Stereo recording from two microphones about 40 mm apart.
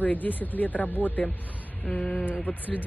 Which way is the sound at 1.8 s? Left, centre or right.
Left.